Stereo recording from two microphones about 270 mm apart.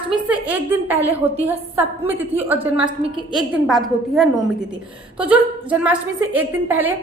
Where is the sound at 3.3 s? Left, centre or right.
Centre.